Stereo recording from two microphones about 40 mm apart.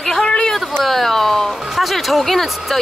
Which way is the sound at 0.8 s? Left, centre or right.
Centre.